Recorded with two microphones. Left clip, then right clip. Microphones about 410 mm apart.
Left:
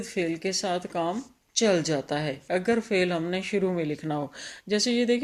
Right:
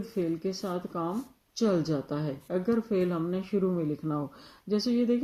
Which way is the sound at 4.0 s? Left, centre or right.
Left.